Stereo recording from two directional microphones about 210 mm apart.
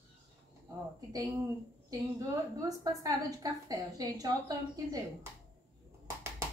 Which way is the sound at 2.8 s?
15° right (ahead or behind).